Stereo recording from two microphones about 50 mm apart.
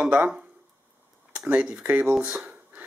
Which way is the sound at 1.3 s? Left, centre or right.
Right.